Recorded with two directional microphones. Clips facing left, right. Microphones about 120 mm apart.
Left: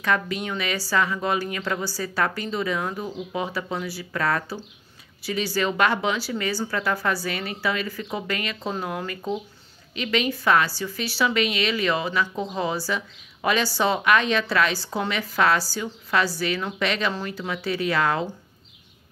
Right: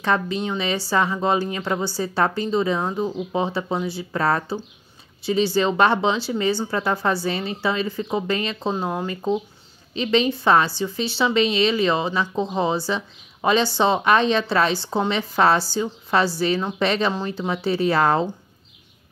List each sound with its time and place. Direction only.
0.0 s a woman's voice: 25° right (ahead or behind)